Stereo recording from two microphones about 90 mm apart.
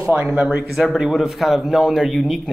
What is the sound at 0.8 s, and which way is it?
Speech, 5° right (ahead or behind).